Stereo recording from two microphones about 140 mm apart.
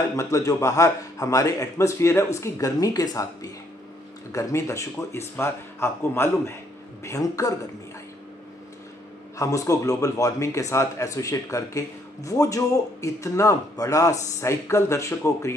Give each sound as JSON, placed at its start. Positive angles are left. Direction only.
{"t": 0.1, "sound": "a man's voice", "side_deg": 25}
{"t": 4.3, "sound": "a man's voice", "side_deg": 20}
{"t": 9.4, "sound": "a man's voice", "side_deg": 25}